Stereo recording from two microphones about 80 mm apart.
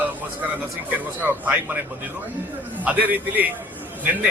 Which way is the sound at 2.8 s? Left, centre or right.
Centre.